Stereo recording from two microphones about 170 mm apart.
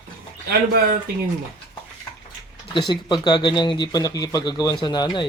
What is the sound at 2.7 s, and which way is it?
Speech, 25° left (ahead or behind).